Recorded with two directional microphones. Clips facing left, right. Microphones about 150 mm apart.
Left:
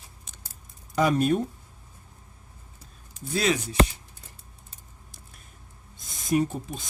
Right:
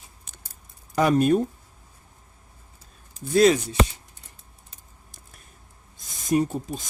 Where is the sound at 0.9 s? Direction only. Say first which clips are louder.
Right 3 dB; 55° right (ahead or behind).